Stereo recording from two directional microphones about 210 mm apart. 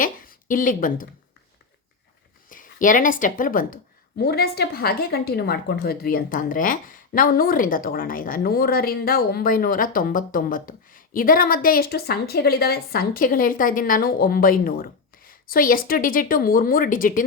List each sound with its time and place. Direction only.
0.0 s a woman's voice: 40° left (ahead or behind)
2.5 s a woman's voice: 40° left (ahead or behind)